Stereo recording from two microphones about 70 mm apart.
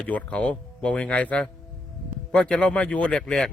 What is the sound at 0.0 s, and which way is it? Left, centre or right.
Speech, centre.